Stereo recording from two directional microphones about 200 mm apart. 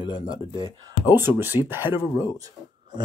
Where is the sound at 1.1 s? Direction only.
10° right (ahead or behind).